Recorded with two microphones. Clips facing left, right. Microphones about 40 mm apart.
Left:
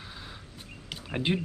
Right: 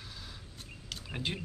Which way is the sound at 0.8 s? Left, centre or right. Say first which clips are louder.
Left 8 dB; left.